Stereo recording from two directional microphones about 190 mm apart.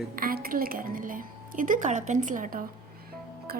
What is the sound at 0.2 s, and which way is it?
A woman's voice, 50° right (ahead or behind).